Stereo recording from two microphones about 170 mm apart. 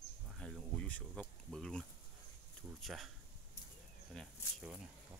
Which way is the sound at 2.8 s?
Centre (ahead or behind).